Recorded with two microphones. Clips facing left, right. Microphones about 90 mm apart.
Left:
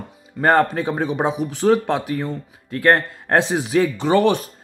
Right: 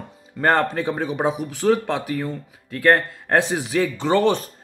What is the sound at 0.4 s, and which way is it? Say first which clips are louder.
Speech: left 3 dB; 15° left (ahead or behind).